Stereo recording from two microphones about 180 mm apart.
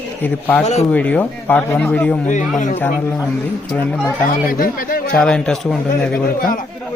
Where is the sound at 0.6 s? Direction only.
40° left (ahead or behind).